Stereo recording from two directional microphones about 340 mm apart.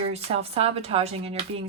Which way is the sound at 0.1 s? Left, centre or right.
Centre.